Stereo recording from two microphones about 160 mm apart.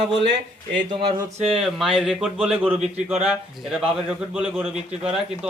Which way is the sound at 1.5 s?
Centre (ahead or behind).